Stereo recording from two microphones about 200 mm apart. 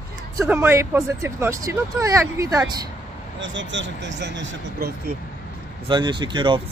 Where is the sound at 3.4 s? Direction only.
65° right (ahead or behind).